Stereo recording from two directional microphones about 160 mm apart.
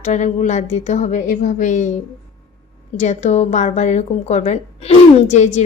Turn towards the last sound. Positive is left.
turn(degrees=45)  # may be behind; listen again after turning